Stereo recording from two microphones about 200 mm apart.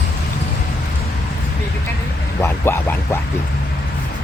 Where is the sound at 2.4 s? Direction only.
15° left (ahead or behind).